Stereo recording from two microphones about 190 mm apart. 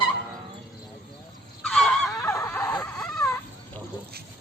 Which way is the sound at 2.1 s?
15° left (ahead or behind).